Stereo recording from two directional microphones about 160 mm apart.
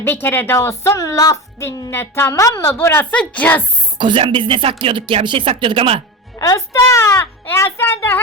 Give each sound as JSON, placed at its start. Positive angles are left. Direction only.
{"t": 0.0, "sound": "speech", "side_deg": 15}
{"t": 3.9, "sound": "speech", "side_deg": -30}
{"t": 6.4, "sound": "speech", "side_deg": 20}